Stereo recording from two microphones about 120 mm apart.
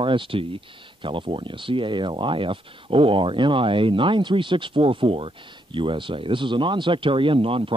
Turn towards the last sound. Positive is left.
turn(degrees=-50)  # may be behind; listen again after turning